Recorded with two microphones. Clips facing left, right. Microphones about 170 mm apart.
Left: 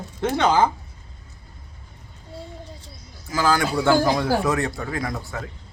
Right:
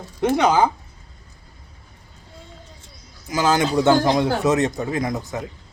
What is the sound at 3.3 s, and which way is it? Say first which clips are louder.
Speech: right 2 dB; 20° right (ahead or behind).